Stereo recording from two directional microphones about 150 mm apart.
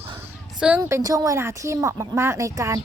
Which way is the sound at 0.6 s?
10° right (ahead or behind).